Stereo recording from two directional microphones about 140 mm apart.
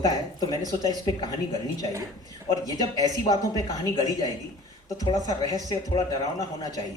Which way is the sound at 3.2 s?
25° left (ahead or behind).